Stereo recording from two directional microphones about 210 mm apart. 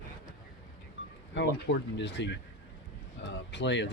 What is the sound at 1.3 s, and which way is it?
Speech, 55° left (ahead or behind).